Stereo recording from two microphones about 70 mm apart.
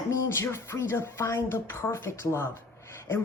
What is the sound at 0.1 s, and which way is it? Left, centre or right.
Speech, left.